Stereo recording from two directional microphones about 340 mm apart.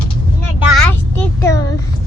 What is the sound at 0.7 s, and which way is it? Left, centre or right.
Speech, centre.